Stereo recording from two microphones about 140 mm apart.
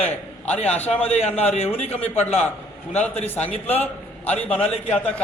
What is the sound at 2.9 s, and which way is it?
A man's voice, 10° left (ahead or behind).